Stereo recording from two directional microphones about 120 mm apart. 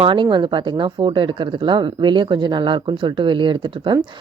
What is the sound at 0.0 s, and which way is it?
A woman's voice, 45° right (ahead or behind).